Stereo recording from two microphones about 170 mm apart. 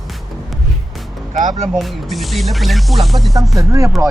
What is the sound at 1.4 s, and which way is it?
Speech, 45° right (ahead or behind).